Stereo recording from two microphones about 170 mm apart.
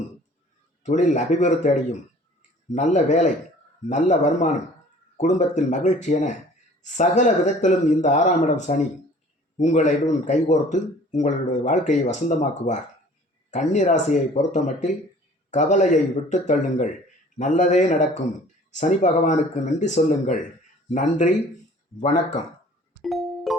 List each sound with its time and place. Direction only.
0.9 s speech: 45° left (ahead or behind)
23.0 s music: centre (ahead or behind)